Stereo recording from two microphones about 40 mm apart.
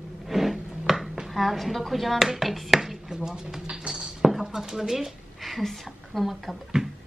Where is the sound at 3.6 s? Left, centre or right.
Centre.